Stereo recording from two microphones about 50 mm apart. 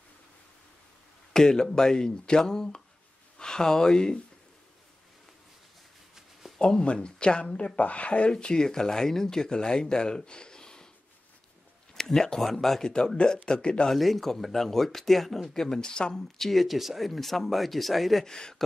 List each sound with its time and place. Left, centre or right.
1.3 s speech: centre
6.6 s speech: centre
11.9 s speech: centre
13.8 s speech: centre
16.2 s speech: centre
18.2 s speech: centre